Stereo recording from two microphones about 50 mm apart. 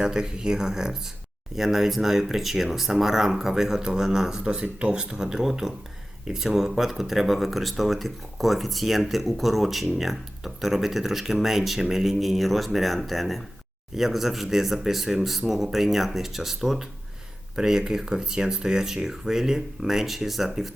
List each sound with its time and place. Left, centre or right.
0.0 s speech: centre
4.4 s speech: right; by 20.7 s centre